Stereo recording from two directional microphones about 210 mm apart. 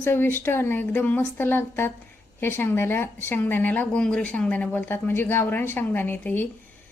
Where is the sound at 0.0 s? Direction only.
10° left (ahead or behind).